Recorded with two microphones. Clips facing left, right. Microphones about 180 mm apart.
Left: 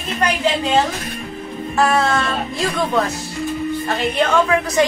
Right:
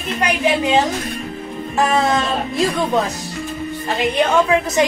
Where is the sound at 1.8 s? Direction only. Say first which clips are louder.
Even; 15° right (ahead or behind).